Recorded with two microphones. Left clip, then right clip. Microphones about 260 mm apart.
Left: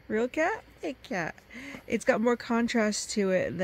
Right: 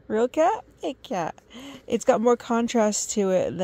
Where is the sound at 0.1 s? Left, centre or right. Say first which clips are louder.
Right 7 dB; centre.